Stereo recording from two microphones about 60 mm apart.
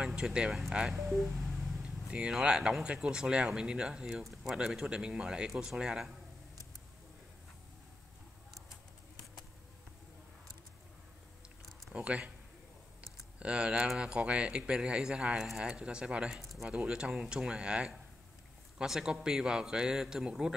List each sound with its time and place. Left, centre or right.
0.0 s speech: centre
2.0 s a man's voice: centre
4.1 s a man's voice: centre
11.9 s speech: centre
13.4 s a man's voice: centre